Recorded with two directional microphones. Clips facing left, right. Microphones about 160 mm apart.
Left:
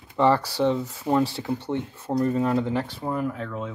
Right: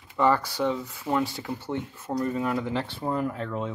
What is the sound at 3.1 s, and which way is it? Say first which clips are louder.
Speech: left 1 dB; 5° left (ahead or behind).